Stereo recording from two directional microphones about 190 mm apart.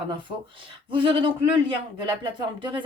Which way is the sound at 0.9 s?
25° right (ahead or behind).